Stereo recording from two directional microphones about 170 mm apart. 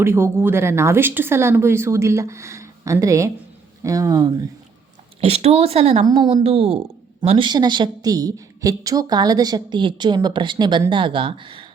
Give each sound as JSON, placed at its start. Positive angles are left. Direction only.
{"t": 0.0, "sound": "a woman's voice", "side_deg": -15}
{"t": 5.2, "sound": "speech", "side_deg": -35}
{"t": 6.1, "sound": "a woman's voice", "side_deg": -25}